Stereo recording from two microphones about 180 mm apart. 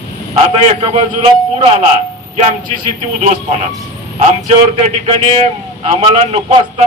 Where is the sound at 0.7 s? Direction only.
30° right (ahead or behind).